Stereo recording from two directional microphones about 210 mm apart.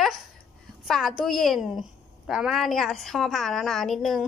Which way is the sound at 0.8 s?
Centre (ahead or behind).